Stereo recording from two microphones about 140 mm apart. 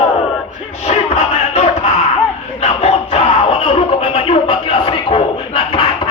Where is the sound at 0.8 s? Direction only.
50° left (ahead or behind).